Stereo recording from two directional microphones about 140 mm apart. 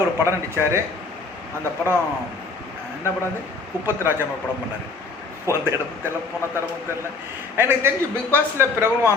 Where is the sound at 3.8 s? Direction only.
15° right (ahead or behind).